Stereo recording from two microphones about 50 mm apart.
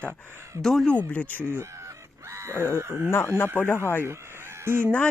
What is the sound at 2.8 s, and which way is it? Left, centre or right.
Speech, right.